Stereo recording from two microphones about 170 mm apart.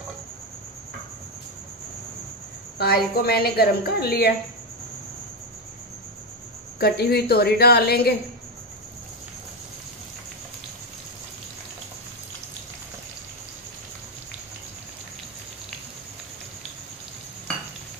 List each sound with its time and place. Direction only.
2.8 s a woman's voice: 65° left (ahead or behind)
6.8 s a woman's voice: 65° left (ahead or behind)